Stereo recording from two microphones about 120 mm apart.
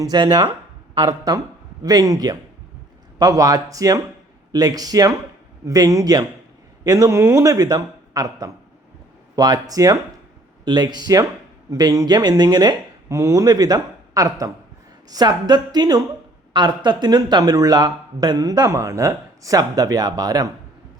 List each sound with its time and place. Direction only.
0.0 s speech: 35° right (ahead or behind)